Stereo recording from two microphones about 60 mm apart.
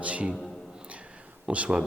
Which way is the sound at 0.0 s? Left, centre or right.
Right.